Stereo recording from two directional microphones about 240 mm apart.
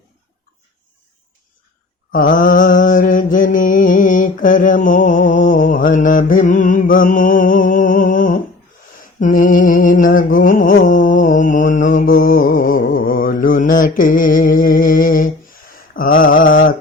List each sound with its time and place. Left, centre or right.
2.1 s mantra: left